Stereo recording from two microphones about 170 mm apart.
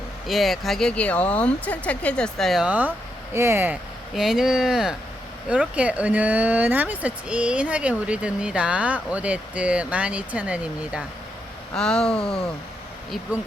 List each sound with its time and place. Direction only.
0.3 s speech: centre (ahead or behind)
4.1 s speech: centre (ahead or behind)
11.7 s speech: 5° left (ahead or behind)